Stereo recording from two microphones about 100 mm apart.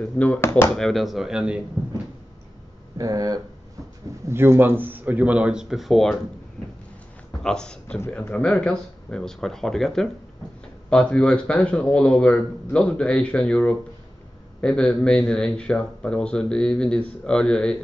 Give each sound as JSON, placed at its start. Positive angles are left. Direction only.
{"t": 0.0, "sound": "a man's voice", "side_deg": 15}
{"t": 0.4, "sound": "speech", "side_deg": 25}
{"t": 0.7, "sound": "speech", "side_deg": 5}
{"t": 3.0, "sound": "speech", "side_deg": -35}
{"t": 4.3, "sound": "speech", "side_deg": -25}
{"t": 7.4, "sound": "a man's voice", "side_deg": 10}